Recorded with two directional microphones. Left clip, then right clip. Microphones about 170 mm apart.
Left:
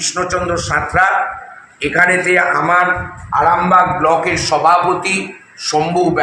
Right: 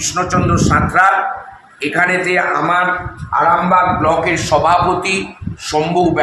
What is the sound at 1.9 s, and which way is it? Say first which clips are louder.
Speech: left 2 dB; 10° left (ahead or behind).